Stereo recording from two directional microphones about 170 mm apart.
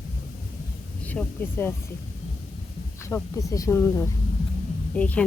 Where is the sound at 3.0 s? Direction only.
20° left (ahead or behind).